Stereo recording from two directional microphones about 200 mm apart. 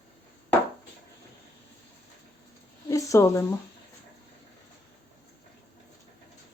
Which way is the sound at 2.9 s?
15° left (ahead or behind).